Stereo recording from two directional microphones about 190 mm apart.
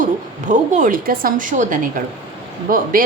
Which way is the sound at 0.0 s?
40° right (ahead or behind).